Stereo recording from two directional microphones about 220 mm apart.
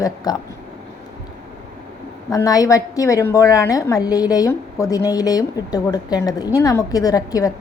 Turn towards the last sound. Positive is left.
turn(degrees=15)  # may be behind; listen again after turning